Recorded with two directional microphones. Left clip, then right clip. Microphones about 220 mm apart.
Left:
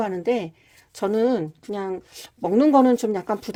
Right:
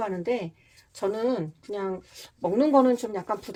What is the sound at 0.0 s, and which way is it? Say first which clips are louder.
Speech: left 5 dB; 50° left (ahead or behind).